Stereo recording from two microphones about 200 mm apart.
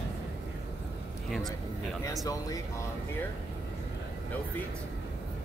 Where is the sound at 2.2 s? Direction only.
15° left (ahead or behind).